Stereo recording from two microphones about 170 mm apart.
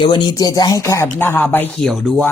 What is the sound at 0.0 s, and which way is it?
Speech, 25° left (ahead or behind).